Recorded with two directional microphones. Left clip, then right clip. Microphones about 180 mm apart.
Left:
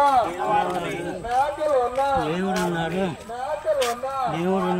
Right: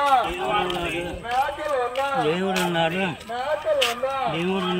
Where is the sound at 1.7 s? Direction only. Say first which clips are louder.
Left 2 dB; 60° left (ahead or behind).